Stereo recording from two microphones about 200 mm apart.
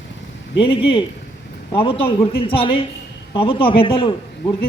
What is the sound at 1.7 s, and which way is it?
Speech, 25° left (ahead or behind).